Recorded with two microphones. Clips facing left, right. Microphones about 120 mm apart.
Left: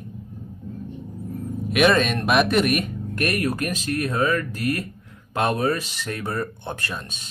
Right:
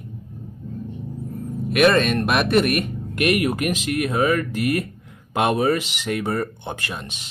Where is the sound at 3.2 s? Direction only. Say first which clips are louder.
Right 4 dB; 15° right (ahead or behind).